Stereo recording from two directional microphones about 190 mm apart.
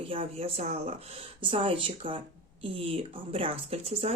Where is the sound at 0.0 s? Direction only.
30° right (ahead or behind).